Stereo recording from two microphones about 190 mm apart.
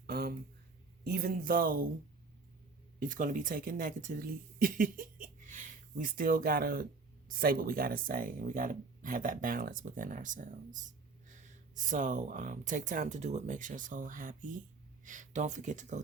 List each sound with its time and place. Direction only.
0.1 s a sound: 55° right (ahead or behind)
1.0 s speech: 55° right (ahead or behind)
3.0 s speech: 45° right (ahead or behind)